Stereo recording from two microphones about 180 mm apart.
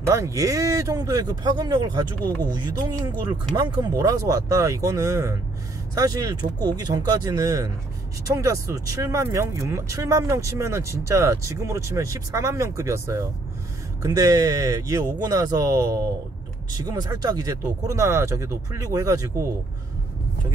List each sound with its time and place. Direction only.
0.0 s speech: 15° right (ahead or behind)